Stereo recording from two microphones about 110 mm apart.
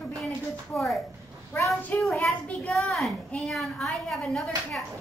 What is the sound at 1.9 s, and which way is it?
Speech, 15° left (ahead or behind).